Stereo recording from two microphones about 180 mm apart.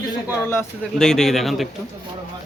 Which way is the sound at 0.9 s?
Centre (ahead or behind).